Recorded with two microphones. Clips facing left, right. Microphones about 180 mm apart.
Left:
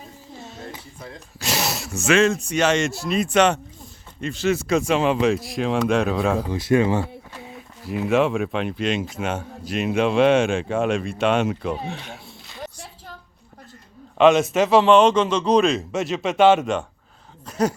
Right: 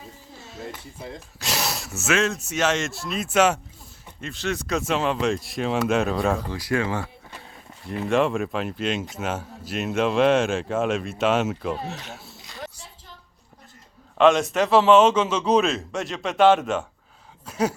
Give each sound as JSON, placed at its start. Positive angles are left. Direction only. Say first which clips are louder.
{"t": 1.4, "sound": "speech", "louder": "left 3 dB", "side_deg": 0}
{"t": 6.5, "sound": "speech", "louder": "left 6 dB", "side_deg": 20}
{"t": 7.9, "sound": "speech", "louder": "left 2 dB", "side_deg": 5}
{"t": 14.2, "sound": "speech", "louder": "left 2 dB", "side_deg": 0}